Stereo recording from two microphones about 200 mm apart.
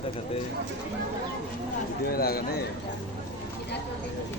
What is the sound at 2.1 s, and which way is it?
Speech, 50° left (ahead or behind).